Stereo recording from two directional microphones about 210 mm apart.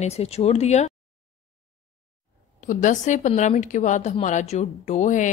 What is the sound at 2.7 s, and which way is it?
A woman's voice, 35° left (ahead or behind).